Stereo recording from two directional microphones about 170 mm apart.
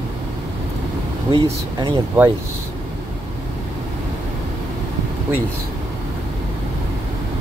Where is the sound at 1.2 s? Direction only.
30° right (ahead or behind).